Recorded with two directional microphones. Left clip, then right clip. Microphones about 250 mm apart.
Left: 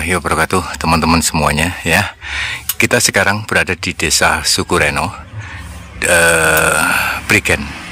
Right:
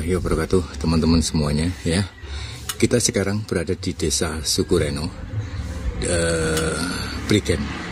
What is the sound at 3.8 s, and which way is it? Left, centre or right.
Speech, centre.